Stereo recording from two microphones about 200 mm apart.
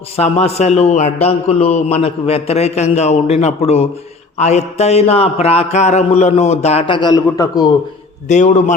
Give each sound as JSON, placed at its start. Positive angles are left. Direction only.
{"t": 0.2, "sound": "a man's voice", "side_deg": 30}
{"t": 8.3, "sound": "a man's voice", "side_deg": 35}